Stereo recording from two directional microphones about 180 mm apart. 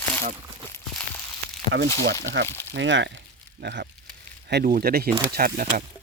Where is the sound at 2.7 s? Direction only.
90° right.